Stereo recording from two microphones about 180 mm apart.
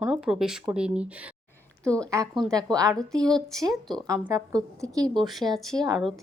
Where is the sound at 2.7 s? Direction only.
20° right (ahead or behind).